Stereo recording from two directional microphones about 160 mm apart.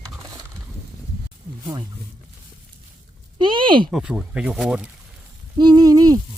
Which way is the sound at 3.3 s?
30° right (ahead or behind).